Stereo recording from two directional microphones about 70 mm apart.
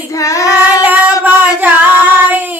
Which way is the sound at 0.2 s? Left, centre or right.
Left.